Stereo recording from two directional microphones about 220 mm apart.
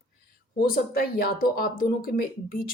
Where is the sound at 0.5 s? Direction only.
40° left (ahead or behind).